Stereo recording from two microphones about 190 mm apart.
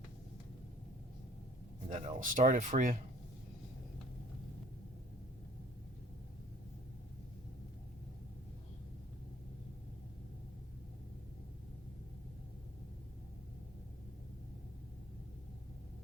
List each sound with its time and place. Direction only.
1.9 s speech: 35° right (ahead or behind)